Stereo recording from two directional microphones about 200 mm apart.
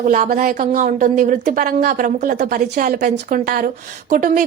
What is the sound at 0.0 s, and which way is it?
A woman's voice, 40° right (ahead or behind).